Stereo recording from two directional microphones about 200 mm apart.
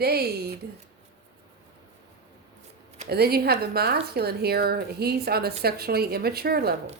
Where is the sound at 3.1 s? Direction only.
50° right (ahead or behind).